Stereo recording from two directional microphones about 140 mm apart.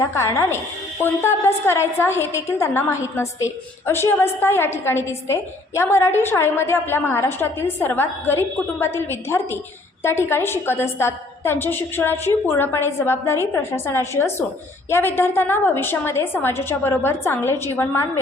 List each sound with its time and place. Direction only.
0.0 s a woman's voice: 20° left (ahead or behind)